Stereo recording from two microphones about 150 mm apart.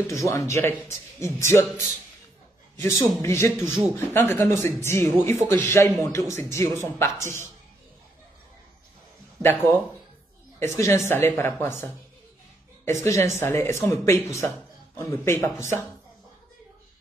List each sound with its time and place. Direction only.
0.1 s a man's voice: 20° left (ahead or behind)
9.4 s speech: 15° left (ahead or behind)
12.8 s a man's voice: 20° left (ahead or behind)